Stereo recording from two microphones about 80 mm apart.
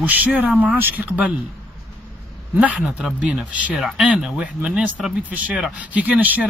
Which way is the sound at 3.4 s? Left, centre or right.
Centre.